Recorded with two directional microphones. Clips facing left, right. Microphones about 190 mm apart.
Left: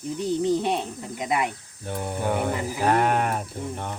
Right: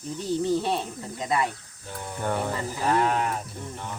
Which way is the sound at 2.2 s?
10° left (ahead or behind).